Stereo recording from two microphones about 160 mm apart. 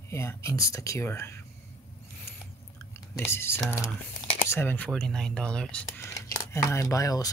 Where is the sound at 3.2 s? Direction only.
15° left (ahead or behind).